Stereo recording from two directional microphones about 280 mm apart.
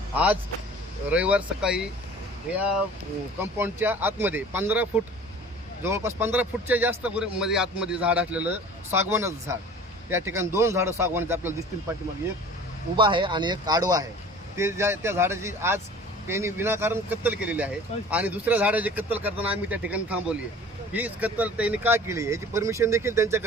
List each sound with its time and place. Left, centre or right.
1.1 s speech: centre
13.0 s speech: centre